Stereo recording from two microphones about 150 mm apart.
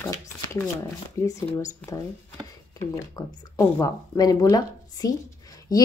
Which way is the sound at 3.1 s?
20° left (ahead or behind).